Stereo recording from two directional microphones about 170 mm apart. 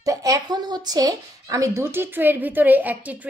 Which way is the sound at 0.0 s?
20° right (ahead or behind).